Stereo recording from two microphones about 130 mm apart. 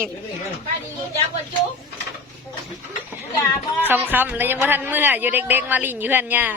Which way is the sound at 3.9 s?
15° right (ahead or behind).